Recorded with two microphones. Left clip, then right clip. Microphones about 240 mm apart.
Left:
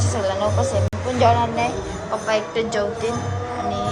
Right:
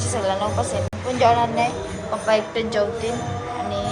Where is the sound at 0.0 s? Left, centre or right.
Centre.